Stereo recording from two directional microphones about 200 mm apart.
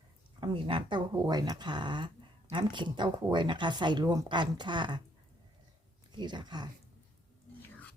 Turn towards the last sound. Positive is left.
turn(degrees=-20)  # may be behind; listen again after turning